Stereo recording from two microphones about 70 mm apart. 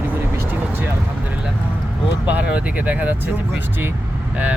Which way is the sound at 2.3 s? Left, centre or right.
Right.